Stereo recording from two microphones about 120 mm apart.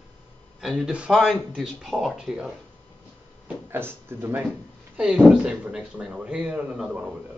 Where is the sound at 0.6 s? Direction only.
Centre (ahead or behind).